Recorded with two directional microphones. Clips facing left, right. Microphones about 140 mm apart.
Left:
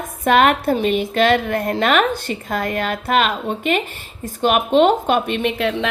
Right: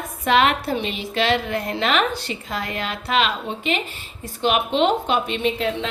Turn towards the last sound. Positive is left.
turn(degrees=65)  # may be behind; listen again after turning